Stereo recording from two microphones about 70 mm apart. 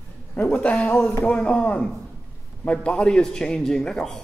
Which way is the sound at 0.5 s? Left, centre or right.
Centre.